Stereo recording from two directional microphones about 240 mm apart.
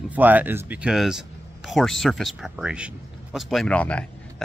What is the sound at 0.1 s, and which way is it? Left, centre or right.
Speech, centre.